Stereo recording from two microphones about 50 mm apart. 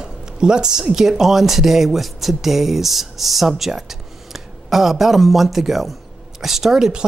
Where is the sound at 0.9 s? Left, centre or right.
Centre.